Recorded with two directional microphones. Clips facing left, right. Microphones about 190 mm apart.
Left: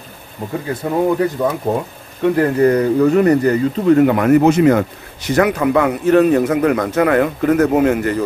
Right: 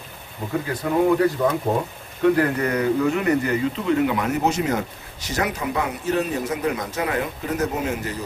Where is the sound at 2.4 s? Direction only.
35° left (ahead or behind).